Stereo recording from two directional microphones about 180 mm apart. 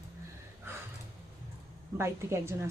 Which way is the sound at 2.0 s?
15° right (ahead or behind).